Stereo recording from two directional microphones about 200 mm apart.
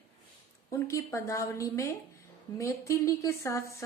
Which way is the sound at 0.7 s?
15° left (ahead or behind).